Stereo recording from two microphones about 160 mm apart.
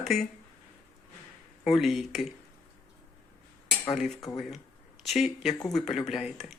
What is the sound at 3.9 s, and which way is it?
Speech, centre (ahead or behind).